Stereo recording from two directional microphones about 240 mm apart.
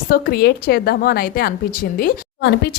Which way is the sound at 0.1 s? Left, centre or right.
Left.